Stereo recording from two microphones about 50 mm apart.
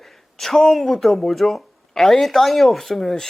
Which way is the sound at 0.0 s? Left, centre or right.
Centre.